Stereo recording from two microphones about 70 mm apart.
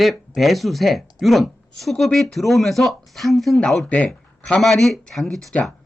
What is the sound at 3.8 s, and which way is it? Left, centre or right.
Speech, centre.